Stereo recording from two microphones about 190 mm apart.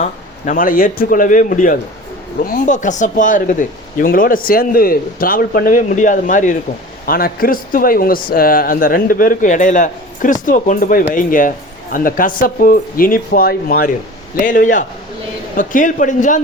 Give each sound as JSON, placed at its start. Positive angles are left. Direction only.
{"t": 0.0, "sound": "speech", "side_deg": 45}